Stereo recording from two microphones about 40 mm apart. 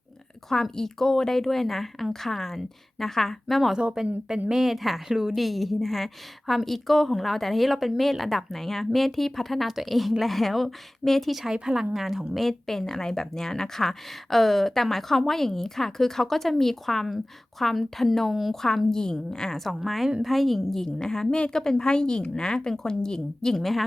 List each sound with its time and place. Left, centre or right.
0.5 s speech: centre
3.5 s a woman's voice: centre
4.0 s a woman's voice: centre
5.3 s a woman's voice: centre
11.5 s speech: centre
12.4 s speech: centre
19.7 s a woman's voice: centre
23.6 s a woman's voice: centre